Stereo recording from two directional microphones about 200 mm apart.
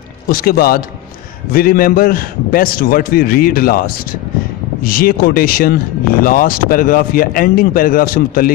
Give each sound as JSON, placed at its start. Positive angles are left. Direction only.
{"t": 0.3, "sound": "a man's voice", "side_deg": 50}